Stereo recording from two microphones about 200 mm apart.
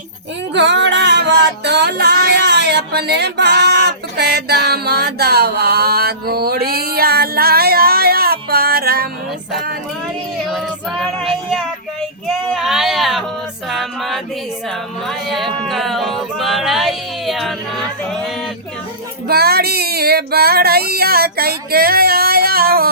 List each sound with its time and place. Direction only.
0.5 s music: 60° right (ahead or behind)
10.4 s child singing: centre (ahead or behind)
12.5 s a sound: centre (ahead or behind)
13.7 s music: centre (ahead or behind)
15.0 s speech: centre (ahead or behind)
15.6 s a capella: centre (ahead or behind)
19.3 s a sound: 50° right (ahead or behind)